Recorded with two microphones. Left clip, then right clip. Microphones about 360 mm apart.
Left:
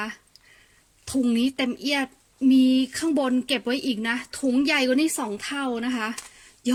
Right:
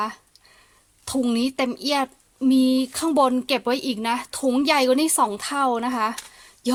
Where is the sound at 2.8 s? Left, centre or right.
Right.